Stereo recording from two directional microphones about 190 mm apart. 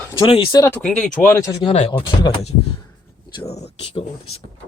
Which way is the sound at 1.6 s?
30° left (ahead or behind).